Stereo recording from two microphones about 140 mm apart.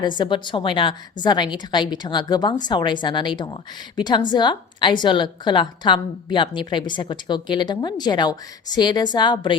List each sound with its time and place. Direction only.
0.2 s a woman's voice: 35° left (ahead or behind)